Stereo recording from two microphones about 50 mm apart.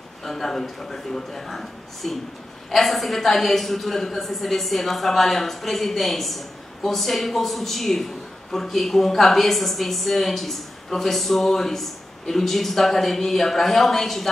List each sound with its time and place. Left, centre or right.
0.2 s a man's voice: centre